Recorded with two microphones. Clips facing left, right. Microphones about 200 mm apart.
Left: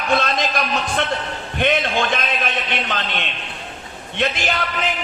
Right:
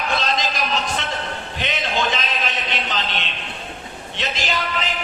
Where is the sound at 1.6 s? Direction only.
55° left (ahead or behind).